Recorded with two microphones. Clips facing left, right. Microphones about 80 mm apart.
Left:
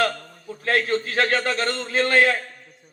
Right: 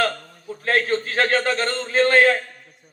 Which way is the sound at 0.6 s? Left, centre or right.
Right.